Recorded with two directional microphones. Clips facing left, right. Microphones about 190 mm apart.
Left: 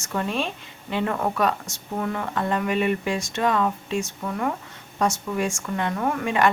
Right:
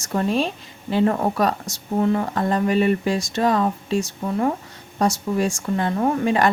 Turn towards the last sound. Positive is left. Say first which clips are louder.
# right 3 dB
turn(degrees=-35)  # may be behind; listen again after turning